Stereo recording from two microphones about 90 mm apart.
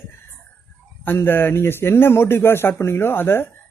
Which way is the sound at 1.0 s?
25° left (ahead or behind).